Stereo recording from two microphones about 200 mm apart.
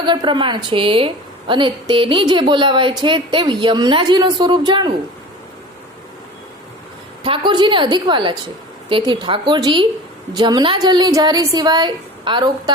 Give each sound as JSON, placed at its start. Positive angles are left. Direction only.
{"t": 0.0, "sound": "a woman's voice", "side_deg": -25}
{"t": 7.3, "sound": "a woman's voice", "side_deg": -25}